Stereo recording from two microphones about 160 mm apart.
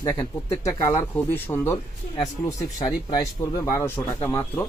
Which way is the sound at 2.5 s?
25° left (ahead or behind).